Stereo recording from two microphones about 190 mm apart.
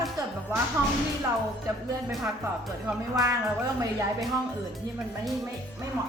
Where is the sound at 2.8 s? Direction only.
15° right (ahead or behind).